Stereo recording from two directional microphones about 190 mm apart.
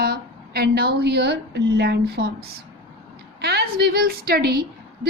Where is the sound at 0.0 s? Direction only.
55° right (ahead or behind).